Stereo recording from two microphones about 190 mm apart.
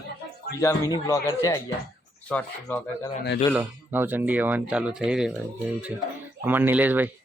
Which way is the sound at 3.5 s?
10° right (ahead or behind).